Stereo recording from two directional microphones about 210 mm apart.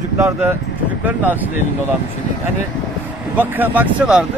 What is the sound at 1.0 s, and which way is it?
Speech, 10° right (ahead or behind).